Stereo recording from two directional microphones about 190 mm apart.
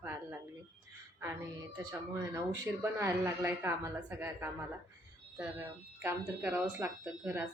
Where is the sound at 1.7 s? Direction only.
15° right (ahead or behind).